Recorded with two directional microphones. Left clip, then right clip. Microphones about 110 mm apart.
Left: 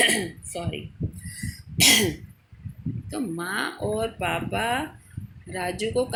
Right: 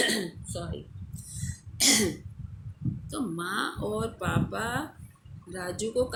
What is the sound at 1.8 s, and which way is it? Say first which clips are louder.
Speech: left 6 dB; 30° left (ahead or behind).